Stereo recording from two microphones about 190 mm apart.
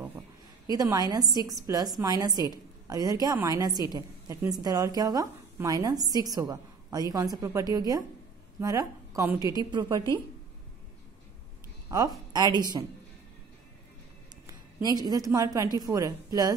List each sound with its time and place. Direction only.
0.7 s a woman's voice: 20° right (ahead or behind)
11.9 s a woman's voice: 20° right (ahead or behind)
14.4 s a woman's voice: 20° right (ahead or behind)